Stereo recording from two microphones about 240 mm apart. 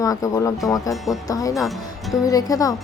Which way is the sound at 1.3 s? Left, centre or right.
Centre.